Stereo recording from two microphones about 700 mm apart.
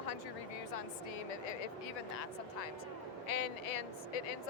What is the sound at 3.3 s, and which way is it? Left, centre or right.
Speech, left.